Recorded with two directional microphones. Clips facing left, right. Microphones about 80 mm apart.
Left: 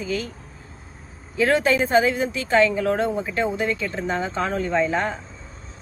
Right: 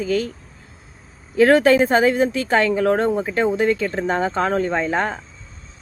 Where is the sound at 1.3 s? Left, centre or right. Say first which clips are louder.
Right 6 dB; right.